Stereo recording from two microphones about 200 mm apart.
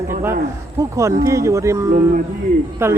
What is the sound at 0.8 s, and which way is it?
Speech, 15° right (ahead or behind).